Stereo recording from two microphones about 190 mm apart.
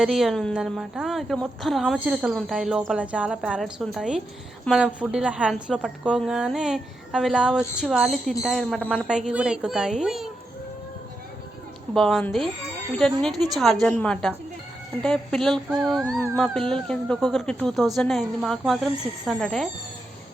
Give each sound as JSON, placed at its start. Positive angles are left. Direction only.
{"t": 0.0, "sound": "speech", "side_deg": 0}
{"t": 11.9, "sound": "speech", "side_deg": 5}